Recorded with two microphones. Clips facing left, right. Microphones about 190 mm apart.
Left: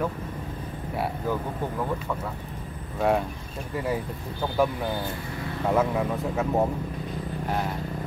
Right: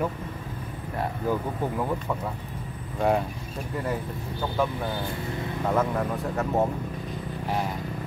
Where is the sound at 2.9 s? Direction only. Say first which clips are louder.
Even; centre (ahead or behind).